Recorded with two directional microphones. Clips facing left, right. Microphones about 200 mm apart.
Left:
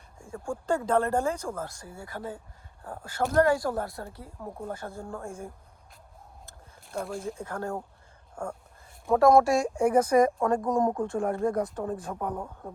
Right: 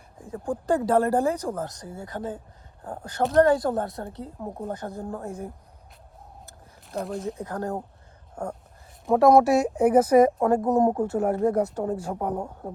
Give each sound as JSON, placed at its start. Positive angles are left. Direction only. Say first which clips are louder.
{"t": 0.2, "sound": "a woman's voice", "louder": "right 5 dB", "side_deg": -20}
{"t": 7.3, "sound": "speech", "louder": "right 3 dB", "side_deg": -15}
{"t": 9.0, "sound": "speech", "louder": "right 3 dB", "side_deg": 0}
{"t": 9.6, "sound": "a woman's voice", "louder": "right 4 dB", "side_deg": -20}